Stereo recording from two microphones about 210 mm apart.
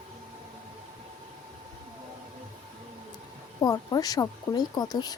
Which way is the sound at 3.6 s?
15° left (ahead or behind).